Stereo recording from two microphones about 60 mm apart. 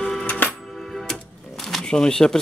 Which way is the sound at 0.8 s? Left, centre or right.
Centre.